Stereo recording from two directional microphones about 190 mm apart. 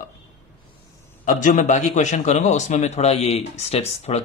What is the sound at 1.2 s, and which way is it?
A man's voice, 45° left (ahead or behind).